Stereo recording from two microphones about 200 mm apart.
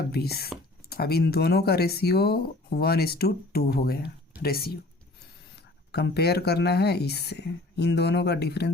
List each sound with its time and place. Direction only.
0.1 s speech: 50° left (ahead or behind)
5.9 s speech: 55° left (ahead or behind)